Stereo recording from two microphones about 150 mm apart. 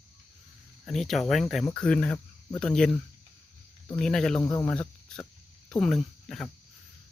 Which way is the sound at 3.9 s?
5° left (ahead or behind).